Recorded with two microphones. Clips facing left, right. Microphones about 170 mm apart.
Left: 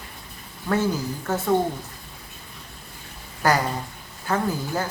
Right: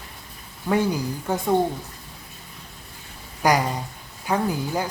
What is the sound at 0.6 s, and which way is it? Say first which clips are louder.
Speech: right 1 dB; 15° right (ahead or behind).